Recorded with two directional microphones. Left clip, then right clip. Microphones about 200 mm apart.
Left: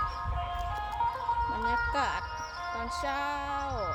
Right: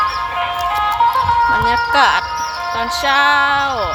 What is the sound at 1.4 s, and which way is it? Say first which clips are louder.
Wind chime: right 18 dB; 30° right (ahead or behind).